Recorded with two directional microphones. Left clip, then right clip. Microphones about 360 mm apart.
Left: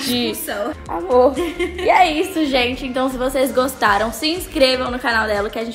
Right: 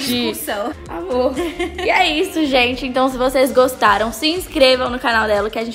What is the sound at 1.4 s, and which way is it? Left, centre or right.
A woman's voice, centre.